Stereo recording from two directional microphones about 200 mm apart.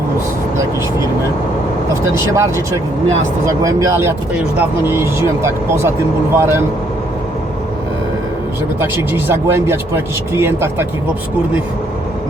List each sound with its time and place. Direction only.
2.1 s speech: 15° right (ahead or behind)
8.8 s speech: 10° right (ahead or behind)